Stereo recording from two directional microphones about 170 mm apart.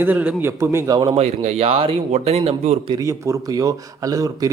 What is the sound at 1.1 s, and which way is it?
Speech, 35° right (ahead or behind).